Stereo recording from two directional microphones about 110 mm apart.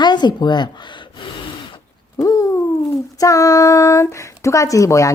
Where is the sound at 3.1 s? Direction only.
30° left (ahead or behind).